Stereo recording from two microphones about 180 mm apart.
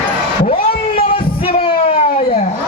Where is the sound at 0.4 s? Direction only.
55° left (ahead or behind).